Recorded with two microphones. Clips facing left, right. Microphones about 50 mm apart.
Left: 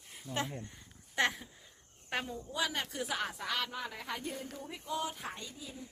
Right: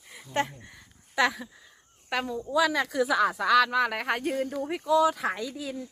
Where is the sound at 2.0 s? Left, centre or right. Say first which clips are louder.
Right 8 dB; right.